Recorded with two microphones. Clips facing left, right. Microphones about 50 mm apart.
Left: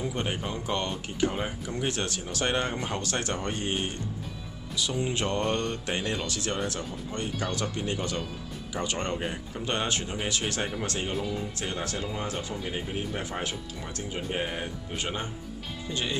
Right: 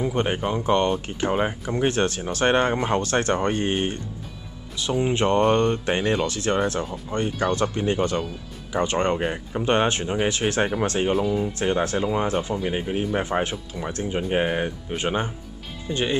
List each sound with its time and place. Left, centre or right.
0.0 s speech: right